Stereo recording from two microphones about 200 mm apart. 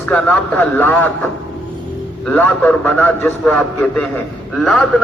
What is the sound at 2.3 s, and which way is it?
A man's voice, 10° left (ahead or behind).